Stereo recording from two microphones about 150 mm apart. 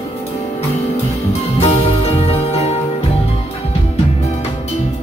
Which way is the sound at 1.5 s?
45° left (ahead or behind).